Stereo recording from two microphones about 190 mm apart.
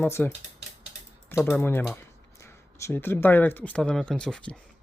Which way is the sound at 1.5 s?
10° left (ahead or behind).